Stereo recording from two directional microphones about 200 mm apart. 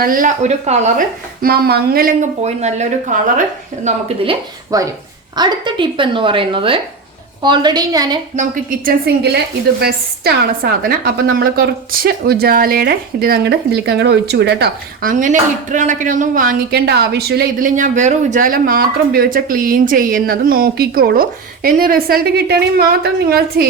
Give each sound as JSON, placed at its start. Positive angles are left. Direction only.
{"t": 0.0, "sound": "speech", "side_deg": -45}
{"t": 2.4, "sound": "a woman's voice", "side_deg": -35}
{"t": 3.8, "sound": "speech", "side_deg": -25}
{"t": 8.4, "sound": "speech", "side_deg": -45}
{"t": 15.1, "sound": "speech", "side_deg": -40}